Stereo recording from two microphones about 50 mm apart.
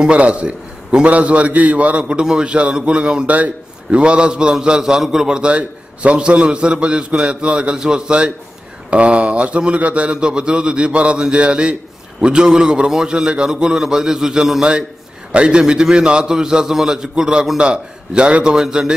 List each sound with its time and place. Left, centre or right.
0.0 s a man's voice: right